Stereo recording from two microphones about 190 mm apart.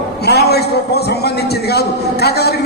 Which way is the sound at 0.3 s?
60° left (ahead or behind).